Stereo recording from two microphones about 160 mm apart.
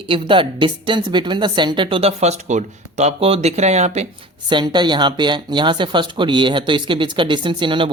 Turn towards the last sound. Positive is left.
turn(degrees=-30)  # may be behind; listen again after turning